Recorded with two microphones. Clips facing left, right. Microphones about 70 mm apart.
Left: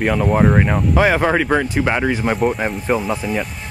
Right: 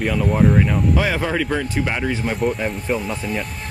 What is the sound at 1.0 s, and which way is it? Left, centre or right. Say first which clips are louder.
Speech: left 5 dB; left.